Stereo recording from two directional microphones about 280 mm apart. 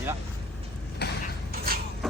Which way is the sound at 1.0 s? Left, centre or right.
Left.